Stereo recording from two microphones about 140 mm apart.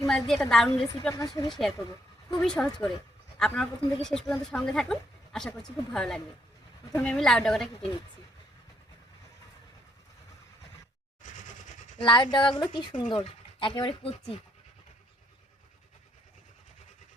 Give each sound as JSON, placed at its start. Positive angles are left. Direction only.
{"t": 0.1, "sound": "a woman's voice", "side_deg": 5}
{"t": 11.2, "sound": "a sound", "side_deg": 65}
{"t": 12.0, "sound": "speech", "side_deg": 35}